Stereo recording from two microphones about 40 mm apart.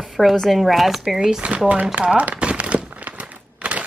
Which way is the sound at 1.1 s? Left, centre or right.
Right.